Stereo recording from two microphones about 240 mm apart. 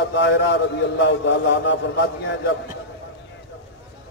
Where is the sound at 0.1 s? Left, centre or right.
Left.